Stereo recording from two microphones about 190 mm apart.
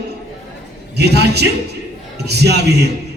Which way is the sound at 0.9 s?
60° right (ahead or behind).